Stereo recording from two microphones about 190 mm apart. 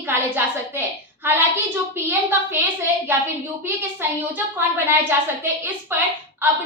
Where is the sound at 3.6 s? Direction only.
10° right (ahead or behind).